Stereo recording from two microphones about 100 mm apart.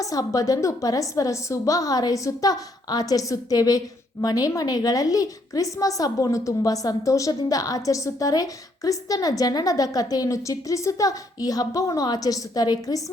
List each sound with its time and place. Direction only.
0.0 s a woman's voice: 35° left (ahead or behind)